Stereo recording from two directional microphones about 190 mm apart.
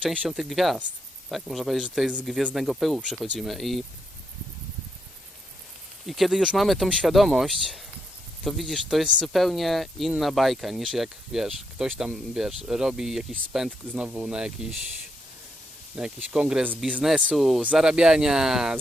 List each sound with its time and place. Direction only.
0.2 s speech: centre (ahead or behind)
6.1 s speech: centre (ahead or behind)
16.0 s speech: 5° right (ahead or behind)